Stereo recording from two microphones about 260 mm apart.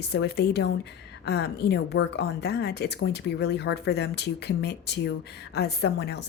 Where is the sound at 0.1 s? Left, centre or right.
Left.